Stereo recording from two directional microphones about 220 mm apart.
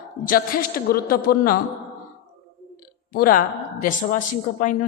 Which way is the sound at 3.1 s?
40° left (ahead or behind).